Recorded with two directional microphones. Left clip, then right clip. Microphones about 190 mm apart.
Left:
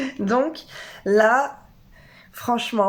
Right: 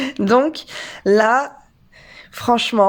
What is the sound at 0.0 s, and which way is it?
Speech, 55° right (ahead or behind).